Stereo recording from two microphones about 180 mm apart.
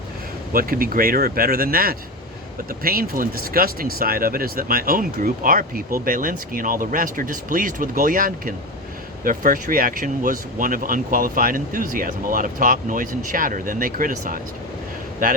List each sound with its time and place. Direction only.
0.5 s speech: 55° right (ahead or behind)